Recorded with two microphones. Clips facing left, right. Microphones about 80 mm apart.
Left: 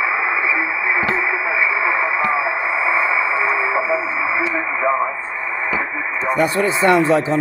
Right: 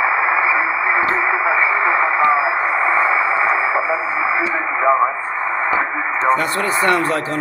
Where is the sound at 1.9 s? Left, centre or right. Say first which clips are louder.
Right 4 dB; right.